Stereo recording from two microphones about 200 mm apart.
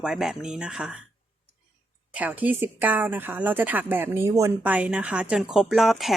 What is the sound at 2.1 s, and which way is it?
Speech, 10° right (ahead or behind).